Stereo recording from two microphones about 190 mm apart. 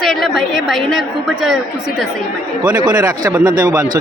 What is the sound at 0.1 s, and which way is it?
A woman's voice, centre (ahead or behind).